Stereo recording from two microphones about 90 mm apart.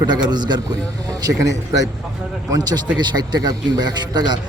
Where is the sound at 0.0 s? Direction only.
50° right (ahead or behind).